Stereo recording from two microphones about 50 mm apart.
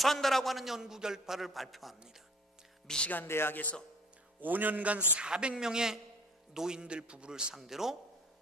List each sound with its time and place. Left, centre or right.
0.0 s a man's voice: centre
2.8 s speech: centre
3.2 s speech: left
4.4 s a man's voice: right
5.1 s a man's voice: centre
7.5 s a man's voice: centre